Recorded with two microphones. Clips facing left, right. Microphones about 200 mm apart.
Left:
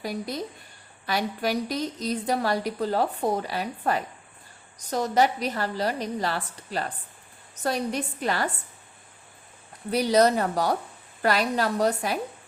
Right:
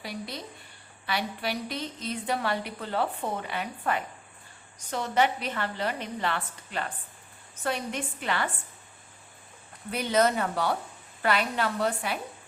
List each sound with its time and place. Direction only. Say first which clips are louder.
0.0 s a woman's voice: left 6 dB; 45° left (ahead or behind)
9.9 s a woman's voice: left 4 dB; 35° left (ahead or behind)